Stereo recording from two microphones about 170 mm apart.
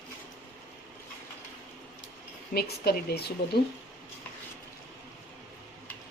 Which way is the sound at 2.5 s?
65° left (ahead or behind).